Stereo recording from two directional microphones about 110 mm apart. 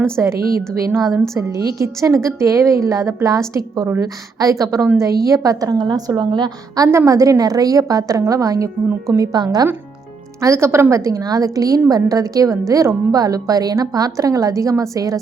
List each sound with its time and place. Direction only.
0.0 s a woman's voice: 25° right (ahead or behind); by 6.8 s 40° right (ahead or behind)
6.8 s a woman's voice: 25° right (ahead or behind)
10.4 s a woman's voice: 25° right (ahead or behind)